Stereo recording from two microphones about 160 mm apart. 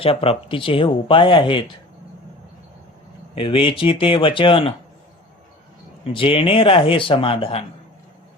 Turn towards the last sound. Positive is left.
turn(degrees=35)  # may be behind; listen again after turning